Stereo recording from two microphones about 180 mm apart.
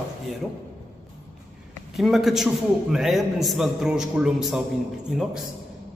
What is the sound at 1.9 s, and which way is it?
A man's voice, centre (ahead or behind).